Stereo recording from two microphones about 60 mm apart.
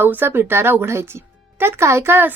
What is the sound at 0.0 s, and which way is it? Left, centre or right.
Speech, right.